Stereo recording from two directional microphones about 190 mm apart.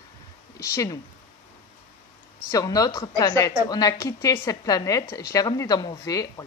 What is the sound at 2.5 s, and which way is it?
A woman's voice, 20° left (ahead or behind).